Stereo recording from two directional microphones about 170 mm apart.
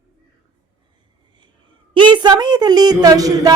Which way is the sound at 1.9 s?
30° right (ahead or behind).